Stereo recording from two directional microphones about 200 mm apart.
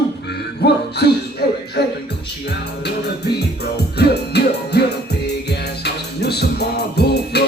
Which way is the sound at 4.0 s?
55° left (ahead or behind).